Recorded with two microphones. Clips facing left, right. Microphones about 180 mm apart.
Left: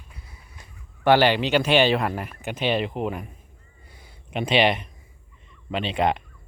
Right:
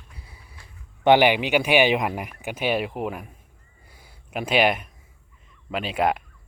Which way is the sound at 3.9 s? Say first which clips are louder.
Left 1 dB; 5° right (ahead or behind).